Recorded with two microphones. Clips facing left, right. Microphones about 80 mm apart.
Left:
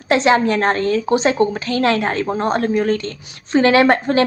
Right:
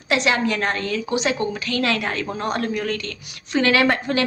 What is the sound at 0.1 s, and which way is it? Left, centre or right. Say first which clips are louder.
A woman's voice: left 6 dB; left.